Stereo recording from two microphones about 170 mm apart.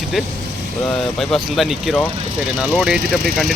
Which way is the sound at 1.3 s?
Centre (ahead or behind).